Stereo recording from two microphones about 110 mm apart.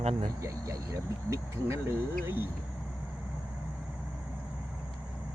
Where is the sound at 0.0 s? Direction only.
75° right (ahead or behind).